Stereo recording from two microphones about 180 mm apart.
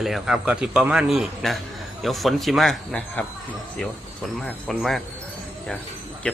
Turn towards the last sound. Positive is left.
turn(degrees=5)  # may be behind; listen again after turning